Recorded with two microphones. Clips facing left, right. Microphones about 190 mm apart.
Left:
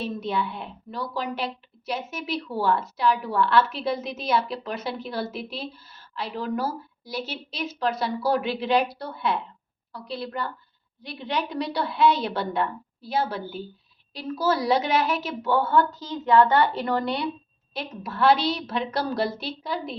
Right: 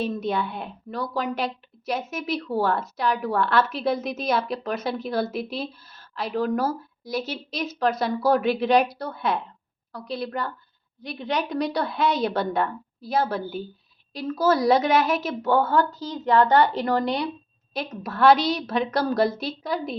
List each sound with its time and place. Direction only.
0.0 s a woman's voice: 45° right (ahead or behind)